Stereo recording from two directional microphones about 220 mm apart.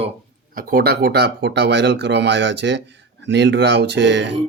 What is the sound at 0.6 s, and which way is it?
Speech, 40° right (ahead or behind).